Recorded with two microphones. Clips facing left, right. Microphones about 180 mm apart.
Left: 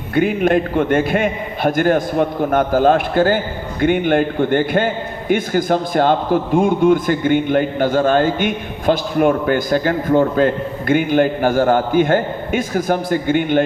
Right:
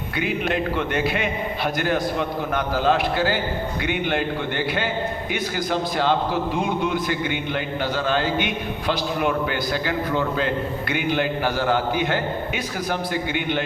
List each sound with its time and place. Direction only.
0.1 s a man's voice: 50° left (ahead or behind)